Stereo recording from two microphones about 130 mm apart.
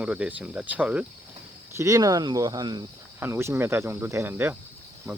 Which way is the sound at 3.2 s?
20° right (ahead or behind).